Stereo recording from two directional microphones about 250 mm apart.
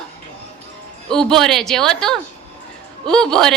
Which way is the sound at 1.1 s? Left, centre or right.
Centre.